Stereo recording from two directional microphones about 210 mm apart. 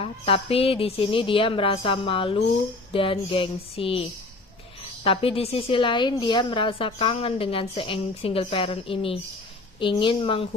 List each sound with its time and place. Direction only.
0.0 s a woman's voice: 25° left (ahead or behind)
5.0 s a woman's voice: 25° left (ahead or behind)